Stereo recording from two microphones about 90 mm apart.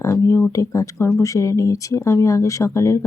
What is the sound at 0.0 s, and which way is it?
Speech, 35° left (ahead or behind).